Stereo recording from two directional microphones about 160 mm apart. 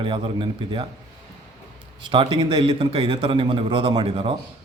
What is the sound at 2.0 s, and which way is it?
A man's voice, 30° right (ahead or behind).